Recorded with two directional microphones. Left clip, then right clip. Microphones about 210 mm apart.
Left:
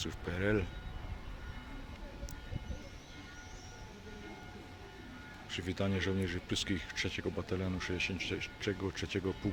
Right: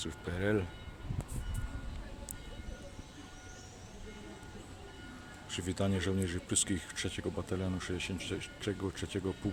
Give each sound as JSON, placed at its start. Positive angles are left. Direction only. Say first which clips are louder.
{"t": 0.0, "sound": "speech", "louder": "even", "side_deg": -5}
{"t": 5.5, "sound": "speech", "louder": "right 1 dB", "side_deg": -15}